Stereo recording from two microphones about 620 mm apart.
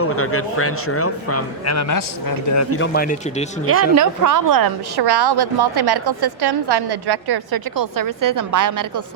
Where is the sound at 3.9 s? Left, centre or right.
Right.